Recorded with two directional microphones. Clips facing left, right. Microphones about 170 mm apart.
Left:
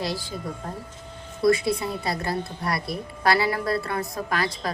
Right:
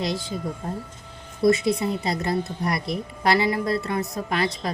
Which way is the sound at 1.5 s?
20° right (ahead or behind).